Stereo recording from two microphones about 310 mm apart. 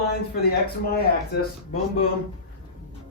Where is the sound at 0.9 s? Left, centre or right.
Left.